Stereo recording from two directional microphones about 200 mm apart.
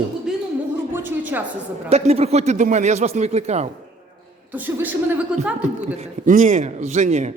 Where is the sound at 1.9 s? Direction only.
30° right (ahead or behind).